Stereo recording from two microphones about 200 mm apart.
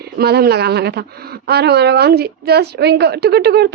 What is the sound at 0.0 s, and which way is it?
A woman's voice, 50° right (ahead or behind).